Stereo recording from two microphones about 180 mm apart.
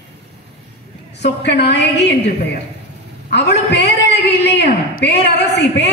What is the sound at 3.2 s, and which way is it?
A man's voice, 70° left (ahead or behind).